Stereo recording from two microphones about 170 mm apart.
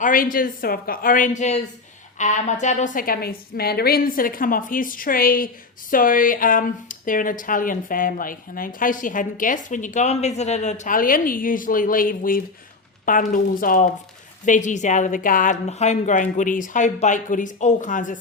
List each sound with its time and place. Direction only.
0.0 s a woman's voice: 55° left (ahead or behind)